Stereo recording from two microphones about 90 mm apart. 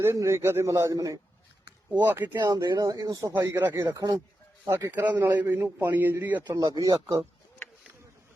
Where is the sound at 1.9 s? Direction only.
20° right (ahead or behind).